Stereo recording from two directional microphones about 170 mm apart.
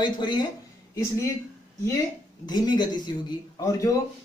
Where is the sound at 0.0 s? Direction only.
25° left (ahead or behind).